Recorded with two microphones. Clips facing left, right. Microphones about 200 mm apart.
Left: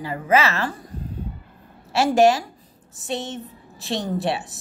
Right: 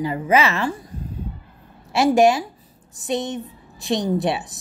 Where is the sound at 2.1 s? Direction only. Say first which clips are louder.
Left 2 dB; 15° right (ahead or behind).